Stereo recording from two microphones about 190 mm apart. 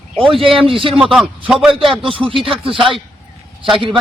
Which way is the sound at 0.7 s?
30° right (ahead or behind).